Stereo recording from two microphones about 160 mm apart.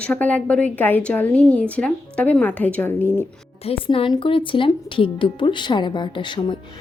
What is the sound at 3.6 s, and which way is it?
A woman's voice, 35° left (ahead or behind).